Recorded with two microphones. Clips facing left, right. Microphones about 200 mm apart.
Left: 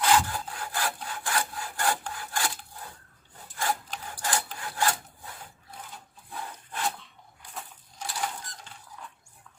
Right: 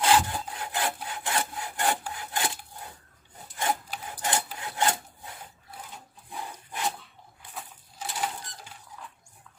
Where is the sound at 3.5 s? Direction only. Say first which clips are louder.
Right 1 dB; 20° right (ahead or behind).